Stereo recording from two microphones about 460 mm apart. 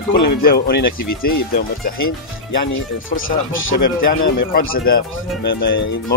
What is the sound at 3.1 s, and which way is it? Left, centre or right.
Speech, left.